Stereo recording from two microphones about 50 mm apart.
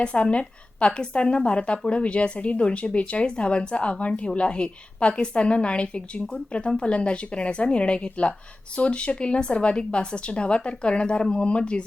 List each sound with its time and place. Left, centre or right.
0.0 s speech: left